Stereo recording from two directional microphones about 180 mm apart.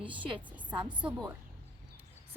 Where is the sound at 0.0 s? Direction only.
30° right (ahead or behind).